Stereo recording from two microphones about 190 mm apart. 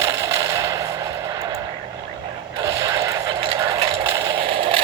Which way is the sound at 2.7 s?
20° right (ahead or behind).